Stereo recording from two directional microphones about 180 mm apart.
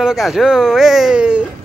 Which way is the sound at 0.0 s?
Centre (ahead or behind).